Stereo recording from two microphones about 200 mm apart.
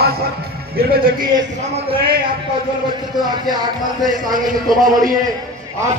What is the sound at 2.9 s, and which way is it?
Speech, 20° right (ahead or behind).